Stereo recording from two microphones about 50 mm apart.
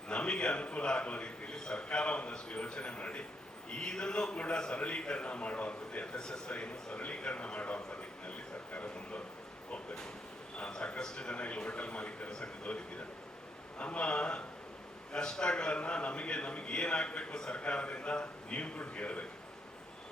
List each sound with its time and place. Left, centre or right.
0.1 s a man's voice: centre
10.6 s a man's voice: centre